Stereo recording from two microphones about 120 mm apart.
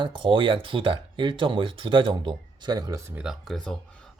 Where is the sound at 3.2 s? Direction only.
Centre (ahead or behind).